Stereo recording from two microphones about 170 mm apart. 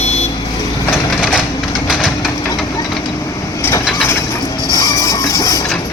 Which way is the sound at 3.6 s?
15° left (ahead or behind).